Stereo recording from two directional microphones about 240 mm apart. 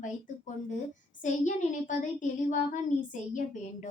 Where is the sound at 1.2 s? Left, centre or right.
Left.